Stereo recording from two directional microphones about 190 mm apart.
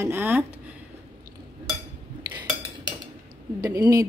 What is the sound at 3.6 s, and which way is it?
Speech, 15° right (ahead or behind).